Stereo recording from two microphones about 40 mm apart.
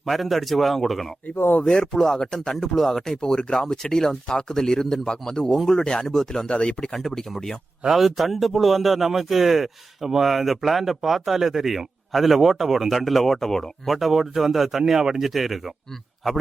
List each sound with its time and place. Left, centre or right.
0.0 s a man's voice: centre
1.6 s speech: centre
3.2 s speech: centre
6.1 s speech: centre
6.5 s speech: left
6.9 s speech: centre
7.9 s a man's voice: centre
13.8 s a man's voice: centre